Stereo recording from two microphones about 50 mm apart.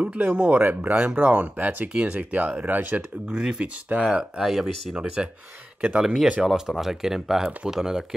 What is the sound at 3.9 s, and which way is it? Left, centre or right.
Speech, right.